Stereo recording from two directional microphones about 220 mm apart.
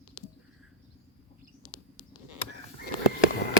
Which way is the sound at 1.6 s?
20° left (ahead or behind).